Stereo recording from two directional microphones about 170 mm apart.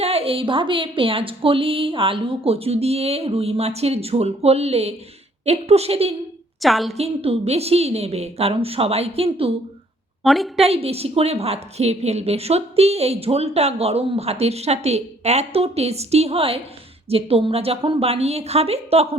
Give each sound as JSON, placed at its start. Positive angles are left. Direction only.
{"t": 0.0, "sound": "a woman's voice", "side_deg": -35}
{"t": 6.6, "sound": "a woman's voice", "side_deg": 0}
{"t": 6.9, "sound": "a woman's voice", "side_deg": -35}
{"t": 10.2, "sound": "a woman's voice", "side_deg": 0}
{"t": 10.7, "sound": "a woman's voice", "side_deg": -35}